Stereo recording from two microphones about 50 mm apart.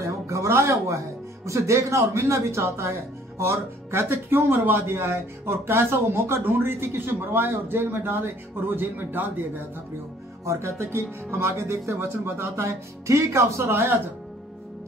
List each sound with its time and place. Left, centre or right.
0.0 s speech: right
3.3 s speech: right
10.4 s speech: right
13.7 s speech: right